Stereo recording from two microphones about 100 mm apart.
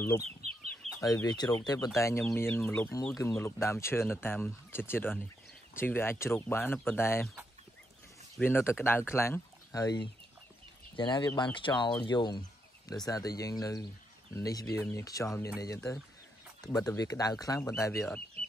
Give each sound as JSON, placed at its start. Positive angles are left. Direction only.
{"t": 0.4, "sound": "chicken", "side_deg": -90}
{"t": 1.0, "sound": "speech", "side_deg": 40}
{"t": 2.0, "sound": "speech", "side_deg": 30}
{"t": 8.4, "sound": "speech", "side_deg": 20}
{"t": 11.0, "sound": "speech", "side_deg": 50}
{"t": 12.1, "sound": "a sound", "side_deg": 50}
{"t": 13.0, "sound": "speech", "side_deg": 35}